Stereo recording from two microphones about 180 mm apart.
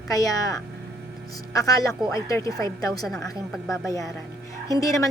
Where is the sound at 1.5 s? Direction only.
20° left (ahead or behind).